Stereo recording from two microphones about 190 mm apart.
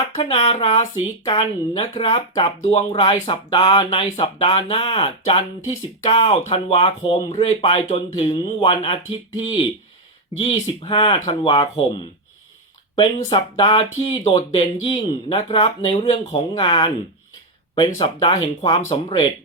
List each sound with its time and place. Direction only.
0.2 s speech: 30° left (ahead or behind)
13.3 s speech: 25° left (ahead or behind)
17.9 s speech: 25° left (ahead or behind)